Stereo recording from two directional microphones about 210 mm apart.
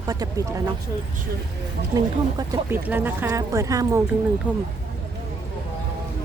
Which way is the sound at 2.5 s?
10° right (ahead or behind).